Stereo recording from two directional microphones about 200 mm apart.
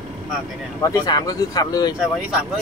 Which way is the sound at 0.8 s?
15° left (ahead or behind).